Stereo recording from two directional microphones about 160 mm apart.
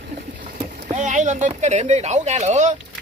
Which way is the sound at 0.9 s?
50° right (ahead or behind).